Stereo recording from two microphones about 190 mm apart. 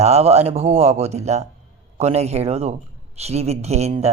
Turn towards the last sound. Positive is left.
turn(degrees=-35)  # may be behind; listen again after turning